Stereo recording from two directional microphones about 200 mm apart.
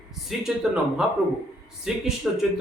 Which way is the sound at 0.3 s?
5° right (ahead or behind).